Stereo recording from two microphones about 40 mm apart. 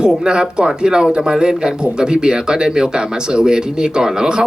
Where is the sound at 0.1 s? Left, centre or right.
Centre.